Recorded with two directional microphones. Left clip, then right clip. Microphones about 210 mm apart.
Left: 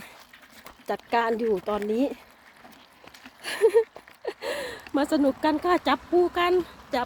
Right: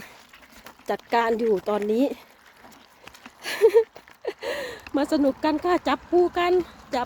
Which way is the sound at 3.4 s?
15° right (ahead or behind).